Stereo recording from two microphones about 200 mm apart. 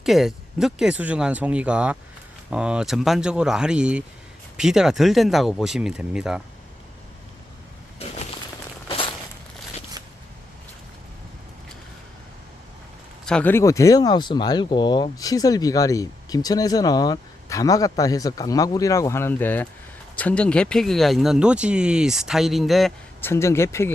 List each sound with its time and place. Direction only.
0.0 s speech: centre (ahead or behind)
8.9 s a sound: 25° left (ahead or behind)
13.2 s speech: 5° left (ahead or behind)
23.2 s speech: 15° left (ahead or behind)